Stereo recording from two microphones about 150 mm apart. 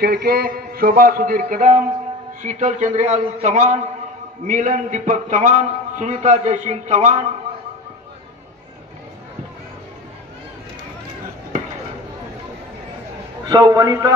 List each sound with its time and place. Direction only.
0.0 s mantra: 90° right; by 1.9 s 65° right (ahead or behind)
2.4 s a man's voice: 55° right (ahead or behind)
13.5 s a man's voice: 25° right (ahead or behind)